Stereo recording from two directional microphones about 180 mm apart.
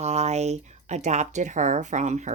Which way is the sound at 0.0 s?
35° right (ahead or behind).